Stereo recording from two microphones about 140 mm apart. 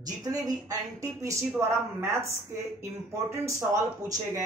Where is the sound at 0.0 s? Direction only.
25° right (ahead or behind).